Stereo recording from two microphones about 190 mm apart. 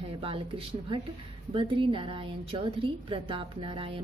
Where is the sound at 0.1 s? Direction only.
30° right (ahead or behind).